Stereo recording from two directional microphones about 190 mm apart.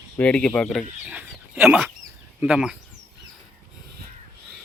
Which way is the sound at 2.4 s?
5° right (ahead or behind).